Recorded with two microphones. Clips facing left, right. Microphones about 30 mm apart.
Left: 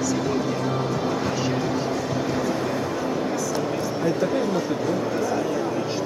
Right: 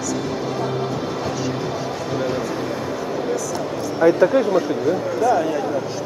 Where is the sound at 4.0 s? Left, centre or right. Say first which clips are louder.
Right 10 dB; right.